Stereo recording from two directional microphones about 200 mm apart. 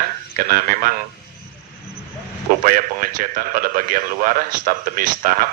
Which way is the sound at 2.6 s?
45° right (ahead or behind).